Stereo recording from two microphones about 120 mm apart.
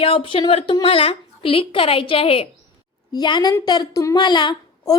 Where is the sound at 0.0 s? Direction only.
50° left (ahead or behind).